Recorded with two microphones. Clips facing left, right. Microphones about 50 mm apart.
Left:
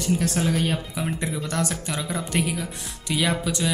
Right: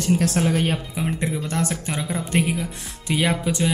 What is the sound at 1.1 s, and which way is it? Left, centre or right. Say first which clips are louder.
Speech: right 2 dB; right.